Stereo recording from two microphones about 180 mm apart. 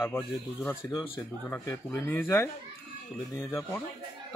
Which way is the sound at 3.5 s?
15° left (ahead or behind).